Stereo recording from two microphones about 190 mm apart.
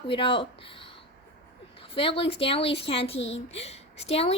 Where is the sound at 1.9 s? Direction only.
30° left (ahead or behind).